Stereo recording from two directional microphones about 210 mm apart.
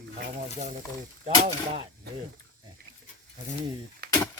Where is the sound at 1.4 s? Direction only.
25° right (ahead or behind).